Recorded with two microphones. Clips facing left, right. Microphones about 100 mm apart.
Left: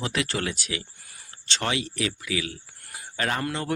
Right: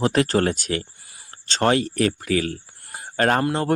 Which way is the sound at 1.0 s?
25° right (ahead or behind).